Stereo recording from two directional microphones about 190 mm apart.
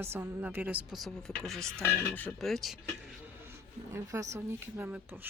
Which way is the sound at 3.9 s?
15° right (ahead or behind).